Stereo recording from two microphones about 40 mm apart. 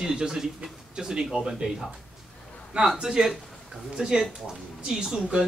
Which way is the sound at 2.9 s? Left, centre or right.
Right.